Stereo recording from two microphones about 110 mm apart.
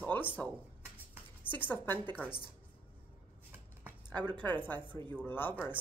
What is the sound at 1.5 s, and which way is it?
Speech, 15° left (ahead or behind).